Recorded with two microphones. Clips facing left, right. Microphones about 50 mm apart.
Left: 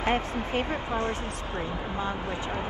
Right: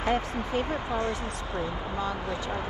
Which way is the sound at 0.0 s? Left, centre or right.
Left.